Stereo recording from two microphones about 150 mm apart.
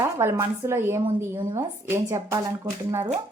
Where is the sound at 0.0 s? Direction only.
15° right (ahead or behind).